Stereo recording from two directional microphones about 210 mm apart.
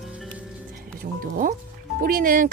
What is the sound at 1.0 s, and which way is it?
Speech, 40° right (ahead or behind).